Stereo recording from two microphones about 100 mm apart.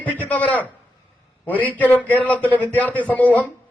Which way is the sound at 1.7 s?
15° left (ahead or behind).